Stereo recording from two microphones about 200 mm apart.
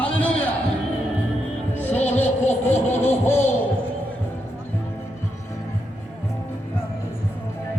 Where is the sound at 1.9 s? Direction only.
35° left (ahead or behind).